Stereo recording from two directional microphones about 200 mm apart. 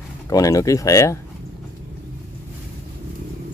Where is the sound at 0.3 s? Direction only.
15° left (ahead or behind).